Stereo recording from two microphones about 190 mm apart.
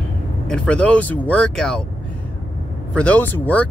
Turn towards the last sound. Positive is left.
turn(degrees=10)  # may be behind; listen again after turning